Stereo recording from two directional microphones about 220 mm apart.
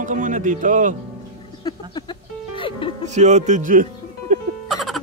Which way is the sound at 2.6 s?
25° left (ahead or behind).